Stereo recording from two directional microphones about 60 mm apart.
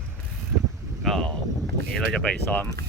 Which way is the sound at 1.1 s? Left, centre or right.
Centre.